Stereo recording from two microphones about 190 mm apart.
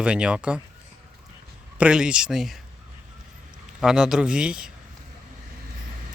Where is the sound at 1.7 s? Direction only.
5° right (ahead or behind).